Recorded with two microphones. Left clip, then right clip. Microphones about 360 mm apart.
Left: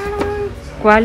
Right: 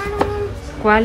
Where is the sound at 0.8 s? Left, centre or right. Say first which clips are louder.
Left 3 dB; centre.